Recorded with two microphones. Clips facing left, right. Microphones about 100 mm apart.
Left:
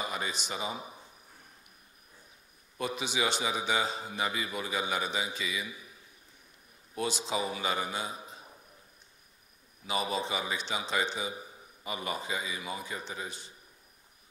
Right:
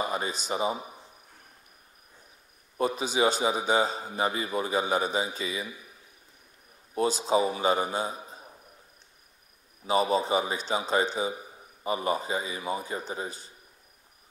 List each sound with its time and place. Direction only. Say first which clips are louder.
0.0 s a man's voice: right 5 dB; 35° right (ahead or behind)
2.8 s a man's voice: right 7 dB; 35° right (ahead or behind)
7.0 s a man's voice: right 8 dB; 40° right (ahead or behind)
9.8 s a man's voice: right 8 dB; 35° right (ahead or behind)